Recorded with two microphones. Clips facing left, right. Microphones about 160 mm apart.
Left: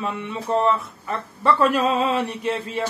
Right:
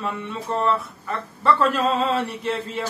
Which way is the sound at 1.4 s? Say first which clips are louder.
Left 1 dB; 15° left (ahead or behind).